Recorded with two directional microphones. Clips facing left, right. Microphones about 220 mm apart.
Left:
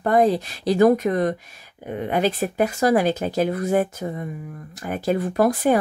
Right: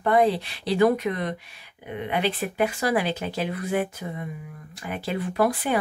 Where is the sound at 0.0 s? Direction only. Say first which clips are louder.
Left 3 dB; 45° left (ahead or behind).